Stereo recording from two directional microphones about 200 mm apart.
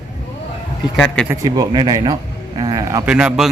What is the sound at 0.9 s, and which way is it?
Speech, 5° left (ahead or behind).